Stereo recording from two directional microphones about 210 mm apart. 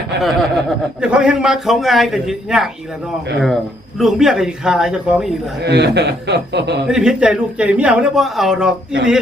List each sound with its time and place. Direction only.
0.2 s a man's voice: centre (ahead or behind)
4.0 s a man's voice: centre (ahead or behind)
5.6 s a man's voice: 55° right (ahead or behind)
6.8 s a man's voice: 5° right (ahead or behind)